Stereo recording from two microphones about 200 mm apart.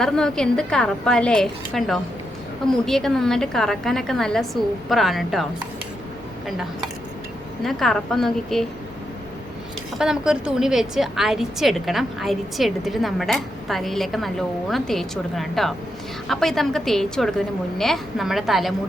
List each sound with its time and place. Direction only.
0.0 s a woman's voice: centre (ahead or behind)
7.6 s a woman's voice: centre (ahead or behind)
10.0 s a woman's voice: 5° right (ahead or behind)